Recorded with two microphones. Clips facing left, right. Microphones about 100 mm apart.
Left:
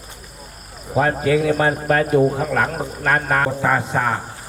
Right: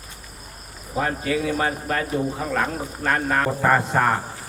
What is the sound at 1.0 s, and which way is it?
Speech, 85° left.